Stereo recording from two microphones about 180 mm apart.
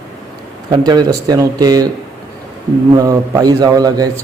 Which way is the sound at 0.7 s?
25° right (ahead or behind).